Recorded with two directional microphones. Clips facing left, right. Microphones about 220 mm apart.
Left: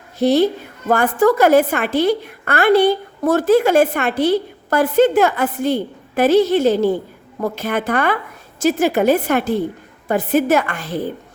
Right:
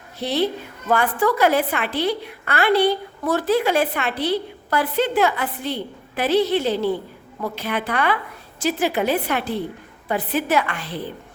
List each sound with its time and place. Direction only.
0.2 s a woman's voice: 45° left (ahead or behind)